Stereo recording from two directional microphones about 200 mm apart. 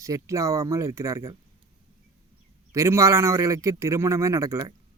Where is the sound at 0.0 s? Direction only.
15° right (ahead or behind).